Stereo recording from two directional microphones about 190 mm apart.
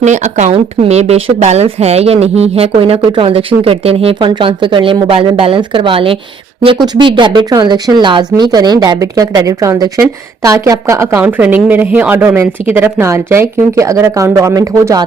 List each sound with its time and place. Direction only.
0.0 s a woman's voice: 40° right (ahead or behind); by 15.0 s 15° right (ahead or behind)